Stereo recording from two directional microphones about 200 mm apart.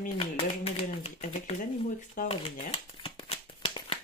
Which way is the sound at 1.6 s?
40° left (ahead or behind).